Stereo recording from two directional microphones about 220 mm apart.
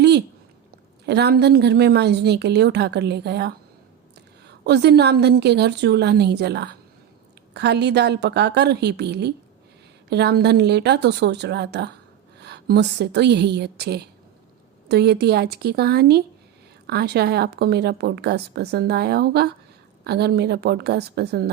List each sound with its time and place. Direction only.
1.0 s speech: 50° right (ahead or behind)